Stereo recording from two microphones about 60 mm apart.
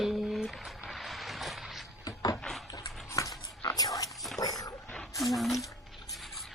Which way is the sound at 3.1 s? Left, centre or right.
Left.